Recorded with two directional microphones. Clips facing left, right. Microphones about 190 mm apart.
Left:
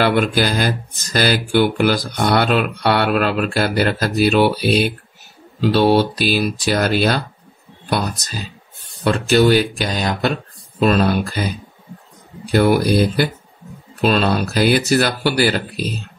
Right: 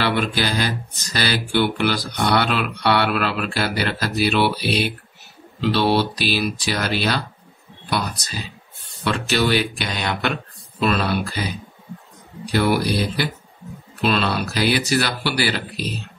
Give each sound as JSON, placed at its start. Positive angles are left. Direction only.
{"t": 0.0, "sound": "speech", "side_deg": 45}
{"t": 9.0, "sound": "speech", "side_deg": 40}
{"t": 12.4, "sound": "speech", "side_deg": 45}